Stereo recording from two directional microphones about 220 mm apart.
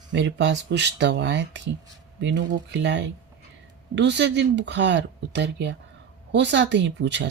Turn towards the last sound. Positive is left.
turn(degrees=-50)  # may be behind; listen again after turning